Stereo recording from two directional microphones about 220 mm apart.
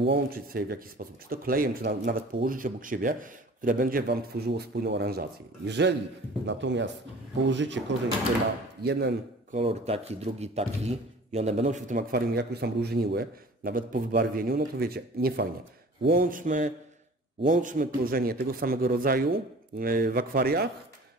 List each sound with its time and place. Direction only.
0.0 s a man's voice: 45° right (ahead or behind)
8.8 s a man's voice: 50° right (ahead or behind)
9.5 s a man's voice: 30° right (ahead or behind); by 20.7 s 45° right (ahead or behind)